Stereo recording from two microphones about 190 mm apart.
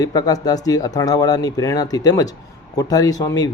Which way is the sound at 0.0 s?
20° left (ahead or behind).